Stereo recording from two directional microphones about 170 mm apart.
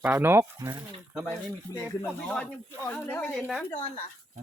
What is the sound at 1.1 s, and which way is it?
Speech, centre (ahead or behind).